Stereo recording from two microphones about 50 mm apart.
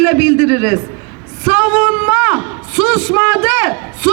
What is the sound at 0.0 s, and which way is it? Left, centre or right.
A man's voice, right.